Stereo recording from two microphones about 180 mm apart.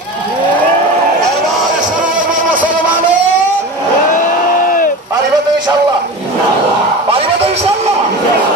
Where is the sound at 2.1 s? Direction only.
10° right (ahead or behind).